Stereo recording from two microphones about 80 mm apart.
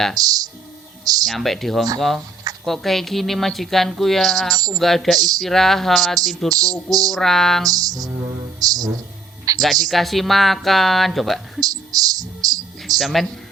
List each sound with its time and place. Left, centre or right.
0.2 s speech: right
1.0 s a sound: right
1.3 s speech: centre
6.5 s music: right
7.1 s speech: centre
7.7 s music: right
8.5 s speech: right
9.5 s music: right
9.8 s speech: centre
11.6 s speech: right
13.0 s speech: centre